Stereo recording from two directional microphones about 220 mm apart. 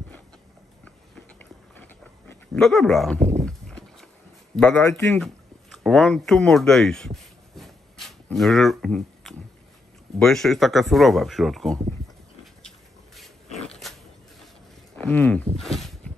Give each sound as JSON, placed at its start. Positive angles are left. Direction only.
{"t": 1.4, "sound": "dog", "side_deg": 10}
{"t": 3.2, "sound": "a sound", "side_deg": -30}
{"t": 3.4, "sound": "horse", "side_deg": 5}
{"t": 4.6, "sound": "a man's voice", "side_deg": 5}
{"t": 5.2, "sound": "speech", "side_deg": 0}
{"t": 8.3, "sound": "speech", "side_deg": 0}
{"t": 12.6, "sound": "dog", "side_deg": 0}
{"t": 15.0, "sound": "speech", "side_deg": 5}